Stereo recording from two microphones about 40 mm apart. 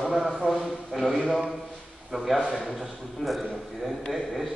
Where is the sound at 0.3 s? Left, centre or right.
Centre.